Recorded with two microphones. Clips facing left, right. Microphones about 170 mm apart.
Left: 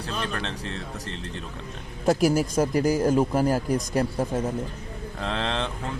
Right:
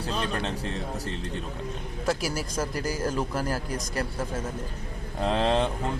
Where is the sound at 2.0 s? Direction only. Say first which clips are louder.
Left 8 dB; 50° left (ahead or behind).